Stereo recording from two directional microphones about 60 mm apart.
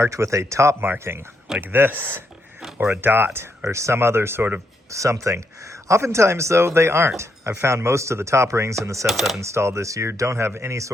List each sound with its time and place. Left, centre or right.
0.0 s speech: right
0.8 s speech: right
3.7 s speech: right
4.9 s speech: right
9.0 s speech: centre
9.4 s speech: right